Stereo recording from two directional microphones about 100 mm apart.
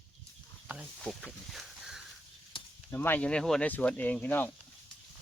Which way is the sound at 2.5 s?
60° left (ahead or behind).